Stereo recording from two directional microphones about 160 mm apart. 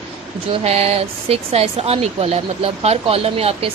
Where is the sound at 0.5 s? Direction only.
40° right (ahead or behind).